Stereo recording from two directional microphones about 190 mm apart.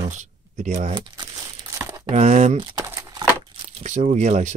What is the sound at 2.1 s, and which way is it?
Speech, 35° right (ahead or behind).